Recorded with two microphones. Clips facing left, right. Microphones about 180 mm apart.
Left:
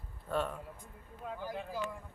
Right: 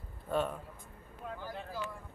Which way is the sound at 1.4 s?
15° left (ahead or behind).